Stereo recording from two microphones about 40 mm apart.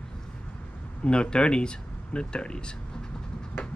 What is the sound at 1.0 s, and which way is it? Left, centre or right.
Speech, left.